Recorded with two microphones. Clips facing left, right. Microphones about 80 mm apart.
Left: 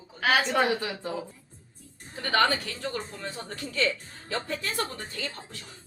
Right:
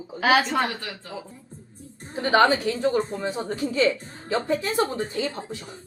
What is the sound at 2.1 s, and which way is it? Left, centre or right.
A woman's voice, right.